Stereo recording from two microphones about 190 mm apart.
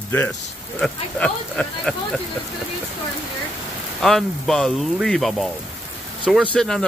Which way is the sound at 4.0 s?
Centre (ahead or behind).